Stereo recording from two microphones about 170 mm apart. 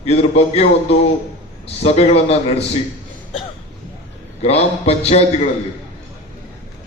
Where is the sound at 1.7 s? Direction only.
40° left (ahead or behind).